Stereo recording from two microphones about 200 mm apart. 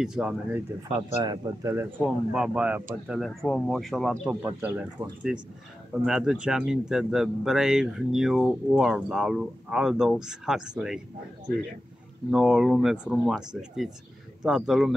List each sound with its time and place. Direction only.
0.0 s speech: 5° right (ahead or behind)
0.8 s speech: 20° right (ahead or behind)
2.0 s speech: centre (ahead or behind)
12.3 s speech: centre (ahead or behind)